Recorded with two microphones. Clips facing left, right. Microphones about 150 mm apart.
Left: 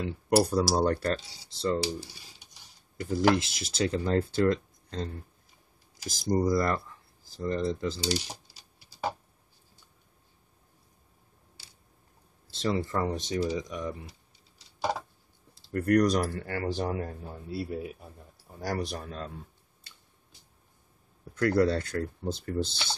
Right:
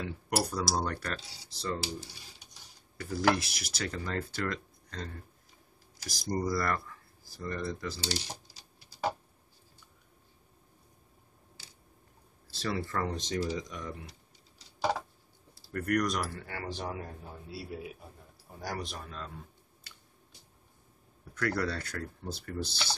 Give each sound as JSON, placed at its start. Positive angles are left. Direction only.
{"t": 0.0, "sound": "speech", "side_deg": 30}
{"t": 3.0, "sound": "speech", "side_deg": 20}
{"t": 12.4, "sound": "speech", "side_deg": 20}
{"t": 15.5, "sound": "speech", "side_deg": 30}
{"t": 21.4, "sound": "speech", "side_deg": 25}